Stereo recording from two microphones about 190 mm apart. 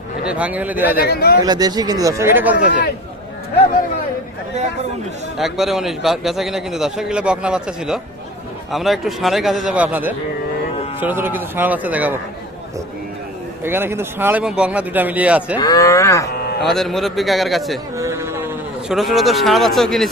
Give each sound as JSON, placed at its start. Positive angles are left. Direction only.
{"t": 0.3, "sound": "speech", "side_deg": -5}
{"t": 0.9, "sound": "speech", "side_deg": 55}
{"t": 1.5, "sound": "speech", "side_deg": -20}
{"t": 5.4, "sound": "a man's voice", "side_deg": 0}
{"t": 13.7, "sound": "speech", "side_deg": -10}
{"t": 15.6, "sound": "speech", "side_deg": 20}
{"t": 16.3, "sound": "cattle", "side_deg": 55}
{"t": 16.6, "sound": "a man's voice", "side_deg": 0}
{"t": 17.9, "sound": "a sound", "side_deg": -15}
{"t": 18.9, "sound": "a man's voice", "side_deg": 0}